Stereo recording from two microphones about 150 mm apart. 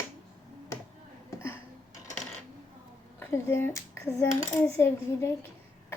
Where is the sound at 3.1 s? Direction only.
15° left (ahead or behind).